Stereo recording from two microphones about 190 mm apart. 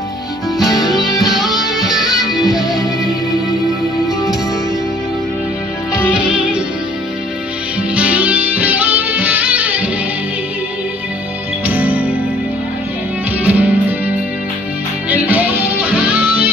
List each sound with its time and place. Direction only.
0.6 s music: centre (ahead or behind)
5.9 s music: 5° right (ahead or behind)
7.9 s music: 5° right (ahead or behind)
11.6 s music: 10° right (ahead or behind)
13.4 s music: 10° right (ahead or behind)